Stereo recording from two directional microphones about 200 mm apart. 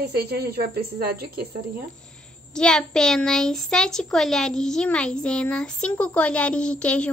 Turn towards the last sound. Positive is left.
turn(degrees=5)  # may be behind; listen again after turning